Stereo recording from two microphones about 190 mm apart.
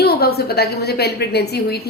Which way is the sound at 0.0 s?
55° left (ahead or behind).